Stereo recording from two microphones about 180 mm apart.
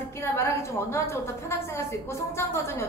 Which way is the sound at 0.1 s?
15° left (ahead or behind).